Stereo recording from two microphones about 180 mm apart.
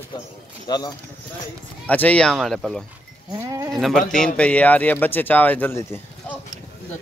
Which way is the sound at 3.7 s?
Centre (ahead or behind).